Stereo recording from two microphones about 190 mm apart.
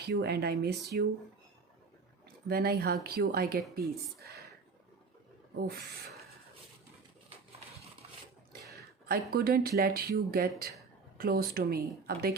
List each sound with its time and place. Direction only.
0.0 s speech: 60° right (ahead or behind)
2.5 s speech: 55° right (ahead or behind)
8.7 s speech: 55° right (ahead or behind)